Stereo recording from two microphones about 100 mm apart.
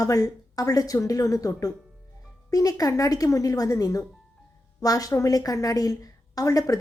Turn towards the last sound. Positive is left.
turn(degrees=35)  # may be behind; listen again after turning